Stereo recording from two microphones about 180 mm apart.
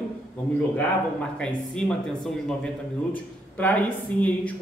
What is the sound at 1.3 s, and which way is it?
A man's voice, 5° left (ahead or behind).